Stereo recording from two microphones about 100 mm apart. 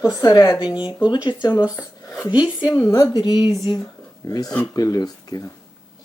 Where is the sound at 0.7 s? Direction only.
10° right (ahead or behind).